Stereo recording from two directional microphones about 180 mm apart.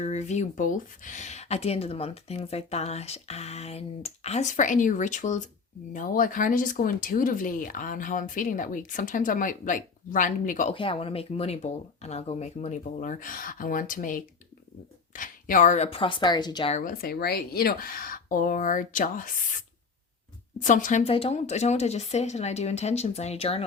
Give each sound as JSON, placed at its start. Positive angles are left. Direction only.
{"t": 0.0, "sound": "speech", "side_deg": 40}
{"t": 10.8, "sound": "speech", "side_deg": 30}
{"t": 16.7, "sound": "speech", "side_deg": 50}